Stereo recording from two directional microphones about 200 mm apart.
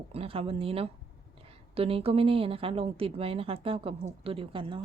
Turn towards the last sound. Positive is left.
turn(degrees=-25)  # may be behind; listen again after turning